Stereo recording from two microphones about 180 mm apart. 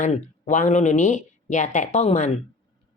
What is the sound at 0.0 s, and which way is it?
Speech, 45° left (ahead or behind).